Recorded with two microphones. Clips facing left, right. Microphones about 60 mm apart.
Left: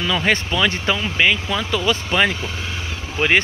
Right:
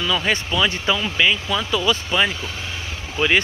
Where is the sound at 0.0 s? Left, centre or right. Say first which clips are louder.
Left 2 dB; left.